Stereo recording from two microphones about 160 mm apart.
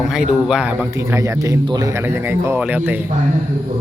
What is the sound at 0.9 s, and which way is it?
Speech, 20° right (ahead or behind).